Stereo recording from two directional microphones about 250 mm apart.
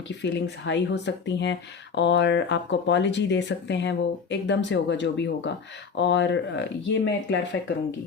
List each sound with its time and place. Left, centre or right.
0.2 s speech: left